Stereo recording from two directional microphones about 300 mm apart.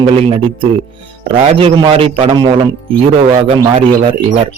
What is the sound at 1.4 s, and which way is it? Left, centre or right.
A man's voice, centre.